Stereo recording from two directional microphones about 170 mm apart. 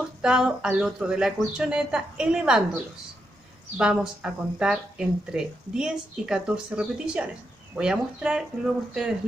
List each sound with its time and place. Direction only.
0.2 s speech: 5° right (ahead or behind)